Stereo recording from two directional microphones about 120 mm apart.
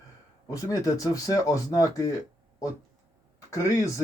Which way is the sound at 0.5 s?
30° left (ahead or behind).